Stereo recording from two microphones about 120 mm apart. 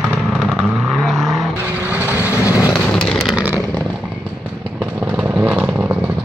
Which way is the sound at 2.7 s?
5° left (ahead or behind).